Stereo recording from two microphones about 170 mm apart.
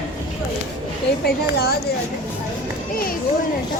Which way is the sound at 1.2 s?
70° left (ahead or behind).